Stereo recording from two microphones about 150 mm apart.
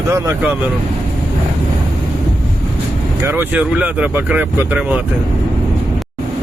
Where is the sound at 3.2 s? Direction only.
15° right (ahead or behind).